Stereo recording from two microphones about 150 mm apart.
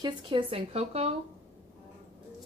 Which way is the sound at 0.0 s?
35° right (ahead or behind).